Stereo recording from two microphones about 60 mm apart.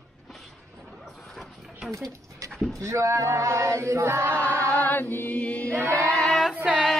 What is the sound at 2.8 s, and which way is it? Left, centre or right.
Male singing, right.